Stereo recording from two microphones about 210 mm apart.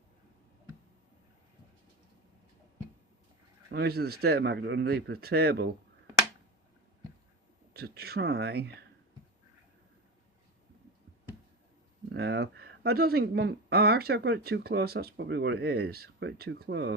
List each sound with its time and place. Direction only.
3.7 s speech: 50° right (ahead or behind)
7.7 s speech: 50° right (ahead or behind)
12.0 s speech: 55° right (ahead or behind)